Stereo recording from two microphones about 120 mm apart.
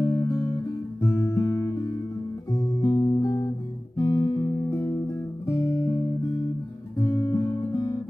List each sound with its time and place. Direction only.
0.0 s guitar: 30° left (ahead or behind)
7.0 s guitar: 20° left (ahead or behind)